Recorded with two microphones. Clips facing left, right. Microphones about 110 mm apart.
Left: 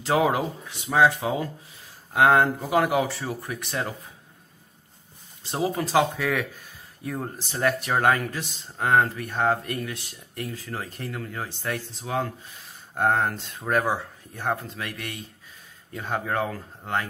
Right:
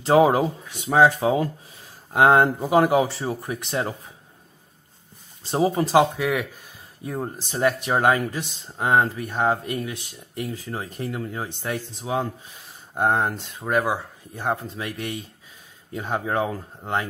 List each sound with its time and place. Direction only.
0.0 s speech: 35° right (ahead or behind)
2.1 s speech: 25° right (ahead or behind)
5.5 s speech: 25° right (ahead or behind)